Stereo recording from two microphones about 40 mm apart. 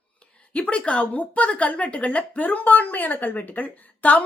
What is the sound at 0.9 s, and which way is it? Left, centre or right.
A woman's voice, left.